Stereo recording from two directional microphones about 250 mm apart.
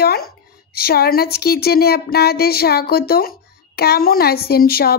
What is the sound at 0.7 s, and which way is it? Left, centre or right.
A woman's voice, left.